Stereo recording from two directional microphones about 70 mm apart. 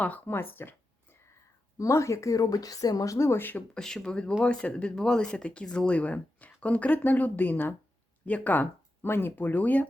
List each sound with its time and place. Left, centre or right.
0.0 s speech: left
1.8 s a woman's voice: left
3.8 s speech: centre
9.0 s speech: left